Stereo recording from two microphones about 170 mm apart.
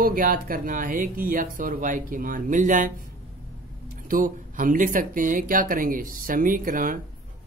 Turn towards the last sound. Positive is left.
turn(degrees=-55)  # may be behind; listen again after turning